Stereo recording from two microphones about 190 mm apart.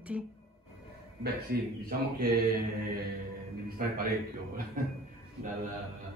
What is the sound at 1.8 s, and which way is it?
Speech, 50° right (ahead or behind).